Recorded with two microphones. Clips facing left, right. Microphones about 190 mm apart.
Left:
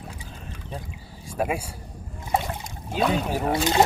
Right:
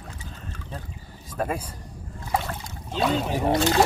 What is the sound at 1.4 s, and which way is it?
Speech, 10° left (ahead or behind).